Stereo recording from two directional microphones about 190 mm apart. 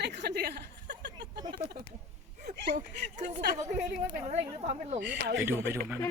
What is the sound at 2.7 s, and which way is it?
A woman's voice, 40° right (ahead or behind).